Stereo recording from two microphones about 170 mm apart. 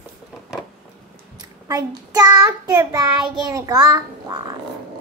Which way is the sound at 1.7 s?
25° right (ahead or behind).